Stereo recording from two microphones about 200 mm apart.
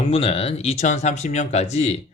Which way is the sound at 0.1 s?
30° left (ahead or behind).